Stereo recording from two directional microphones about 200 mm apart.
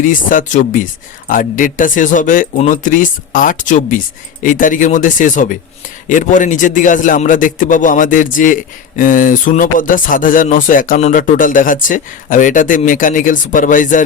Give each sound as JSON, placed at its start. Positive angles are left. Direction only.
{"t": 0.0, "sound": "speech", "side_deg": 40}